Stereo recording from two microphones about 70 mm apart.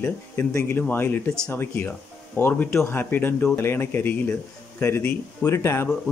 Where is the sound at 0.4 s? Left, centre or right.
Left.